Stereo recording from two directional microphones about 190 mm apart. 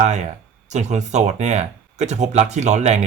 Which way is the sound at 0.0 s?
35° right (ahead or behind).